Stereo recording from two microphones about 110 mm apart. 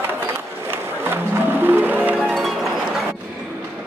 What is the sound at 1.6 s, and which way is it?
Music, 15° right (ahead or behind).